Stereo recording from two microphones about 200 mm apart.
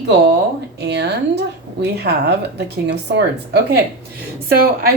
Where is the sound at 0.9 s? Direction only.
55° right (ahead or behind).